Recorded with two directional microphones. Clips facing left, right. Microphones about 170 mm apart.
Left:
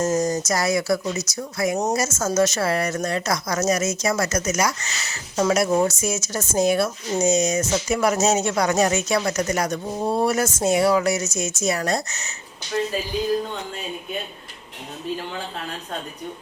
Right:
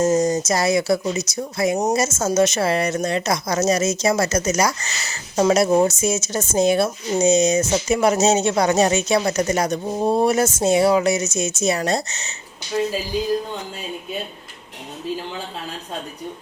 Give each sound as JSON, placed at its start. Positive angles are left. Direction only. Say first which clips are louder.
{"t": 0.0, "sound": "speech", "louder": "right 4 dB", "side_deg": -15}